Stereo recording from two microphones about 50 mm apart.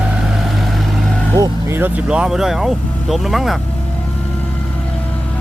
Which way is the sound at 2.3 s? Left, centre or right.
Centre.